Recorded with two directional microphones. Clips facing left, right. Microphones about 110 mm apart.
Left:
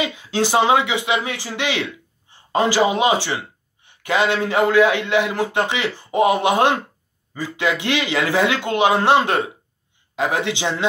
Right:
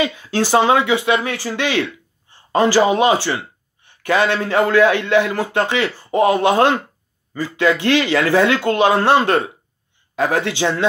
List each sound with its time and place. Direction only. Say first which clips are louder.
0.0 s a man's voice: right 2 dB; 15° left (ahead or behind)